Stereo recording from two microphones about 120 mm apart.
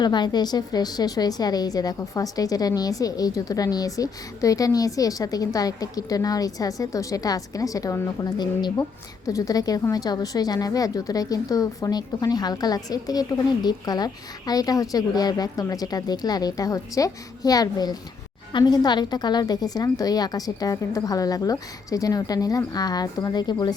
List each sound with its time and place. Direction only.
0.0 s a woman's voice: 35° left (ahead or behind)